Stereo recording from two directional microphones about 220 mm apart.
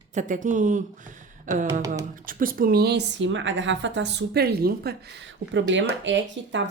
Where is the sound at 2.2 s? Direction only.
40° right (ahead or behind).